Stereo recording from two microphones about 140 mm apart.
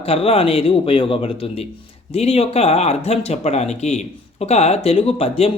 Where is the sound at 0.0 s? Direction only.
45° left (ahead or behind).